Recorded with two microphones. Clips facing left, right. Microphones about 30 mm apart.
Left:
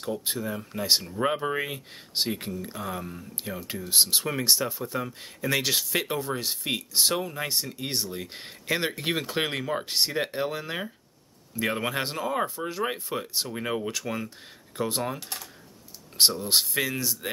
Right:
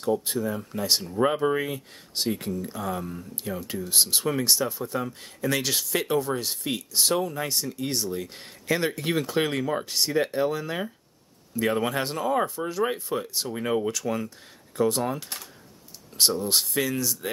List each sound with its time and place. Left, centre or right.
0.2 s speech: centre
1.6 s speech: left
3.2 s speech: centre
12.2 s speech: centre
16.2 s speech: centre